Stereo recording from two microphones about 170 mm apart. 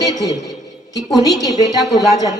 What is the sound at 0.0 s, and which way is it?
A woman's voice, 20° left (ahead or behind).